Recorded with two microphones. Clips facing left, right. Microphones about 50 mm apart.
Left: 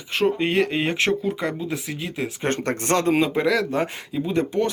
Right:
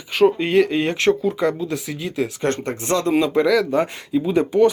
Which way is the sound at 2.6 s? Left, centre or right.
Left.